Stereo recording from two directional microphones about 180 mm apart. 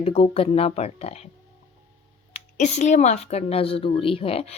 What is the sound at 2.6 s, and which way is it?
A woman's voice, 40° left (ahead or behind).